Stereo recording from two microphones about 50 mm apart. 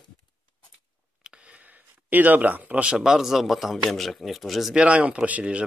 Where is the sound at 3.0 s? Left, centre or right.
Centre.